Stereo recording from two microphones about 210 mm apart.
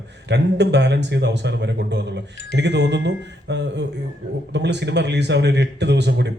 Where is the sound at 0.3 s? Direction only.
55° right (ahead or behind).